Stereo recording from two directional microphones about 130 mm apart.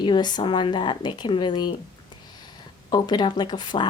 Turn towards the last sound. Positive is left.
turn(degrees=35)  # may be behind; listen again after turning